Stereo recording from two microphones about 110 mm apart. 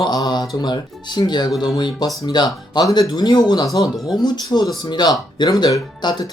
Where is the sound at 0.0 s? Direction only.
40° left (ahead or behind).